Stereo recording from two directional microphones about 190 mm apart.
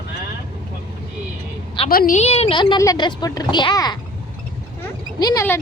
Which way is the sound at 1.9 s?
50° left (ahead or behind).